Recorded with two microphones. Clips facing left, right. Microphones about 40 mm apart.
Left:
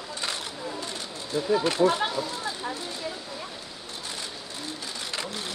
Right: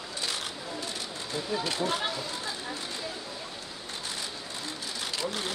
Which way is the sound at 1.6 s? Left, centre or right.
Left.